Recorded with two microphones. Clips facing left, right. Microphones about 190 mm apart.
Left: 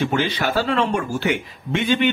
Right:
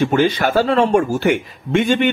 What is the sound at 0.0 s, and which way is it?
Speech, 50° right (ahead or behind).